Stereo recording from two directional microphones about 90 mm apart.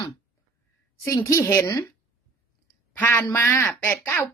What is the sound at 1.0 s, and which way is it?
Speech, 35° left (ahead or behind).